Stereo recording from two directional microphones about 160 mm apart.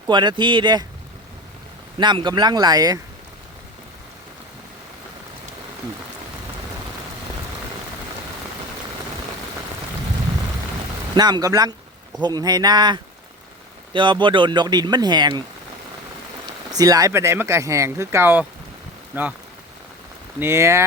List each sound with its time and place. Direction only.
0.1 s speech: 30° right (ahead or behind)
2.0 s speech: 30° right (ahead or behind)
11.1 s speech: 25° right (ahead or behind)
16.7 s speech: 20° right (ahead or behind)
20.4 s speech: 15° right (ahead or behind)